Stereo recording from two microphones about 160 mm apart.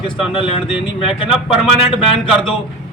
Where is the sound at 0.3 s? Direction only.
35° left (ahead or behind).